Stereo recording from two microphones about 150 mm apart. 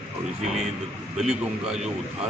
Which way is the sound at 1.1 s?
5° right (ahead or behind).